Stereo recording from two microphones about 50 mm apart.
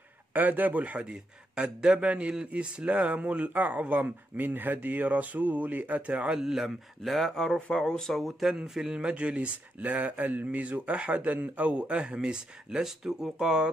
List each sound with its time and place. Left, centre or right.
0.3 s speech: right
1.6 s speech: centre
6.3 s speech: centre